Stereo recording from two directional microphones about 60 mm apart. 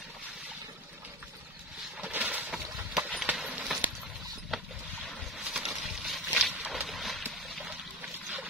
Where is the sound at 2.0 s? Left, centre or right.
Right.